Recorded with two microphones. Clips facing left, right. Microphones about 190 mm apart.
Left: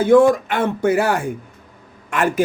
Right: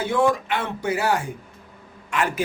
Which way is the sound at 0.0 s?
45° left (ahead or behind).